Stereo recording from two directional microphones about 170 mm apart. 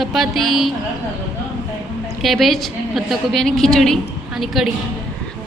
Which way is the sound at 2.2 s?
Centre (ahead or behind).